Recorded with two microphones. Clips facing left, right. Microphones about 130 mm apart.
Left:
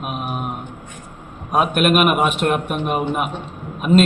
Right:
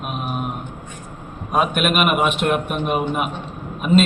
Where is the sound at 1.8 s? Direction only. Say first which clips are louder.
Left 2 dB; centre (ahead or behind).